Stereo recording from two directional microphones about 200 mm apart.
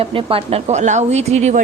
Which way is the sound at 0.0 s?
25° right (ahead or behind).